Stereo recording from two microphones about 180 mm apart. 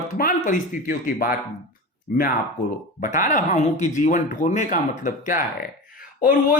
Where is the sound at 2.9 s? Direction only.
50° left (ahead or behind).